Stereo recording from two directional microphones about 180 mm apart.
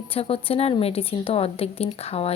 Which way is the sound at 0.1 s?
30° left (ahead or behind).